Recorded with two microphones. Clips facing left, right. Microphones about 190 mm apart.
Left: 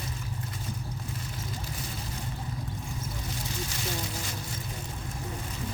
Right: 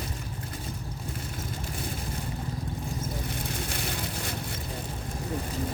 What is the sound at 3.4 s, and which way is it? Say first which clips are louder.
Boat: right 2 dB; 60° right (ahead or behind).